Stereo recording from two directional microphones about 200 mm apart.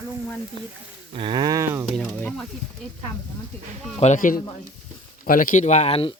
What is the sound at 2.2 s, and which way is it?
Speech, 5° left (ahead or behind).